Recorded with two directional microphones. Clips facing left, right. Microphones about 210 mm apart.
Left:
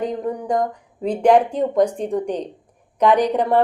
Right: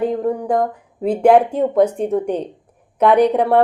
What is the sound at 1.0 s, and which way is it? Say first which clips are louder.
A woman's voice: right 3 dB; 5° right (ahead or behind).